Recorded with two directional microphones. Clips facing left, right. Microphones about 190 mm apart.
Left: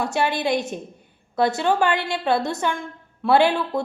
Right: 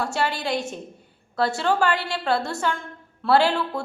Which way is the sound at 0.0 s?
20° left (ahead or behind).